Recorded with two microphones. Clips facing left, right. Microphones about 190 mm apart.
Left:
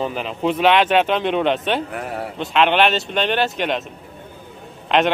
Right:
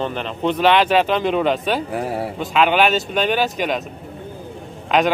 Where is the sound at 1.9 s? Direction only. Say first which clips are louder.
Right 4 dB; 30° right (ahead or behind).